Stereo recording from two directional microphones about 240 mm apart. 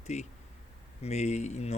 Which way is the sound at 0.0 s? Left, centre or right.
Left.